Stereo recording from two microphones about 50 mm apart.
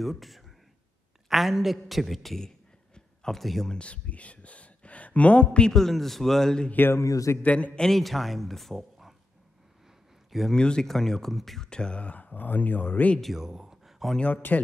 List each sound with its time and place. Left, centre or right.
0.0 s a woman's voice: centre
3.7 s speech: left
5.7 s a man's voice: centre
6.9 s a man's voice: left
7.4 s a man's voice: left
7.9 s speech: centre
10.5 s a man's voice: centre
11.7 s speech: left
13.2 s speech: centre
14.5 s speech: left